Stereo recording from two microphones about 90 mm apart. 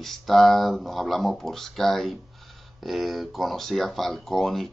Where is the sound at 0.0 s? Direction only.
Centre (ahead or behind).